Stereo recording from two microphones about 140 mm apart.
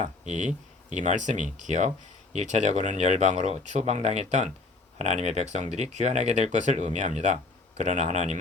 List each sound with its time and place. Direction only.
0.0 s speech: 60° right (ahead or behind)